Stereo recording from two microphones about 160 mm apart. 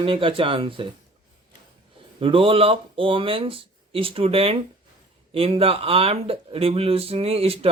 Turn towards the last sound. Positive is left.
turn(degrees=-35)  # may be behind; listen again after turning